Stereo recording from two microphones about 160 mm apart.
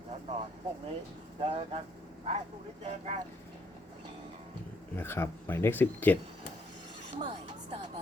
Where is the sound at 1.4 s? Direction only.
40° right (ahead or behind).